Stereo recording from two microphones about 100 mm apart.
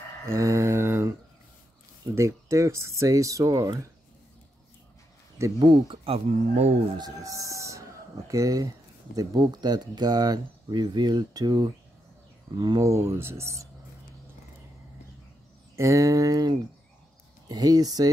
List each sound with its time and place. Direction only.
0.3 s mantra: 30° right (ahead or behind)
2.1 s speech: 30° right (ahead or behind)
5.6 s speech: 50° right (ahead or behind)
6.0 s speech: 90° right
7.0 s speech: 35° right (ahead or behind)
12.8 s speech: 30° right (ahead or behind)
15.7 s speech: 30° right (ahead or behind)